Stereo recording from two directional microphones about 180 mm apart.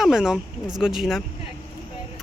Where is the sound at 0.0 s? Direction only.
5° right (ahead or behind).